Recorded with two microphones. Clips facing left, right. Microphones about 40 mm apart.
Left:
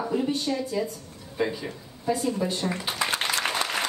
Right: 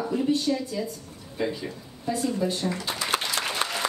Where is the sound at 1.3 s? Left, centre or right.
Centre.